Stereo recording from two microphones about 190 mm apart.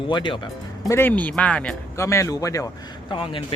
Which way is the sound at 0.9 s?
10° left (ahead or behind).